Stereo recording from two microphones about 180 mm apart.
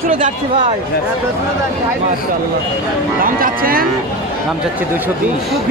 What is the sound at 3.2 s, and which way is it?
Speech, 50° right (ahead or behind).